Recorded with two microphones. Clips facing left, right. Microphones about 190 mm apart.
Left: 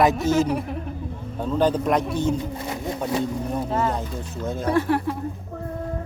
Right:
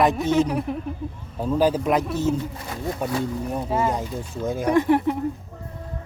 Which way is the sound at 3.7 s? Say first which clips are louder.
Right 1 dB; 10° right (ahead or behind).